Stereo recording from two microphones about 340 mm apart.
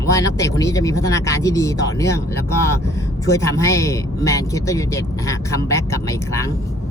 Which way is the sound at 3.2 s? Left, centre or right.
Centre.